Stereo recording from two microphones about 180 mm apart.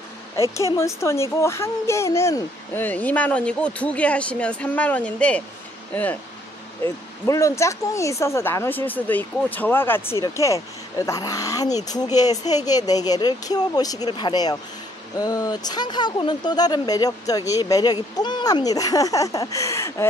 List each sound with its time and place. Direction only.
0.4 s speech: 15° left (ahead or behind)